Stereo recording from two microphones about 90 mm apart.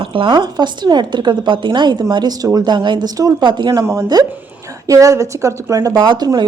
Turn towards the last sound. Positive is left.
turn(degrees=-60)  # may be behind; listen again after turning